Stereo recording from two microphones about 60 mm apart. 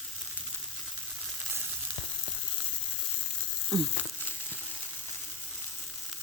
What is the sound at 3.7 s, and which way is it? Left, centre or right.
Crumpling, right.